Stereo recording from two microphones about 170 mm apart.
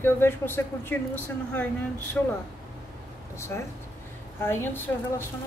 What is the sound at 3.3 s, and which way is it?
Speech, 15° left (ahead or behind).